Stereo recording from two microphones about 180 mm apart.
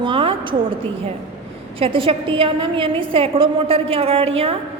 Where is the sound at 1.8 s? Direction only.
30° right (ahead or behind).